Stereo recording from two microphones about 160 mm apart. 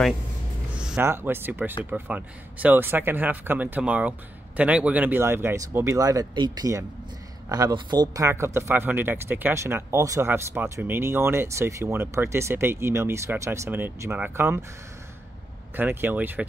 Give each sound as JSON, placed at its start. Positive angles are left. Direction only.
{"t": 0.7, "sound": "speech", "side_deg": -10}
{"t": 15.7, "sound": "speech", "side_deg": -10}